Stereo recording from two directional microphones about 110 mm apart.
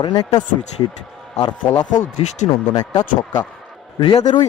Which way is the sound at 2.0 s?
90° left.